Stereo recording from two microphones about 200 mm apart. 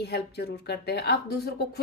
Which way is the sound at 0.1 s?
55° left (ahead or behind).